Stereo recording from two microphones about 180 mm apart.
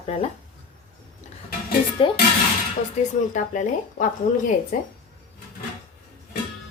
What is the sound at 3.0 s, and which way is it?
Speech, 40° left (ahead or behind).